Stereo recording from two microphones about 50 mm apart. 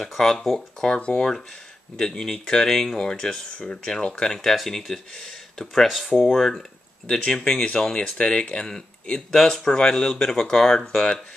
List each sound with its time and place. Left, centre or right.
0.0 s speech: centre
0.8 s speech: centre
5.9 s speech: centre